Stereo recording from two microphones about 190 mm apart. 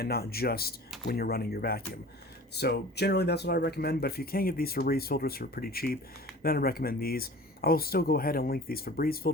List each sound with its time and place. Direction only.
0.0 s speech: 55° left (ahead or behind)